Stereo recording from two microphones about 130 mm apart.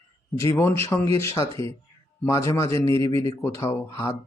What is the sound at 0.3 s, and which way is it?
Speech, 20° left (ahead or behind).